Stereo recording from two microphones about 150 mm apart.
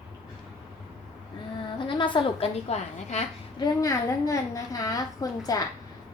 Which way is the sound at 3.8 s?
20° left (ahead or behind).